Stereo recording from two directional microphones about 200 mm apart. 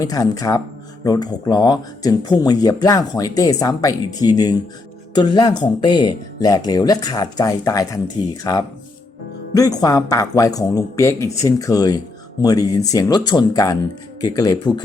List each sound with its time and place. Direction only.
0.0 s speech: 20° left (ahead or behind)